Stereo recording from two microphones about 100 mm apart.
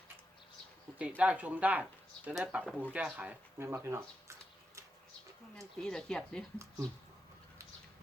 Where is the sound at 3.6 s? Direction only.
25° right (ahead or behind).